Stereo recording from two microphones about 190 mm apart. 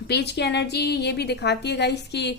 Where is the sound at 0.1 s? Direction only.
60° left (ahead or behind).